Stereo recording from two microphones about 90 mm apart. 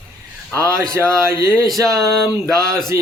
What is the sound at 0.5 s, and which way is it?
Speech, 40° right (ahead or behind).